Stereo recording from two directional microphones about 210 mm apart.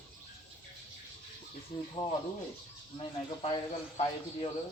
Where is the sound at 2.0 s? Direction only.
20° left (ahead or behind).